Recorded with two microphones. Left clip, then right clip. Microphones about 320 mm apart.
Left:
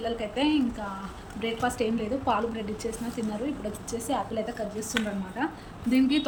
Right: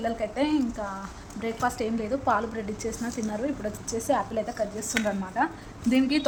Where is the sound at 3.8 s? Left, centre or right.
Centre.